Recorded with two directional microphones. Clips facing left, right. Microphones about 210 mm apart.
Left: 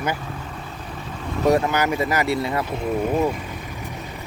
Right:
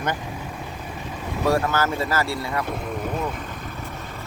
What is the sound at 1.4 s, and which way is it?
Speech, 20° left (ahead or behind).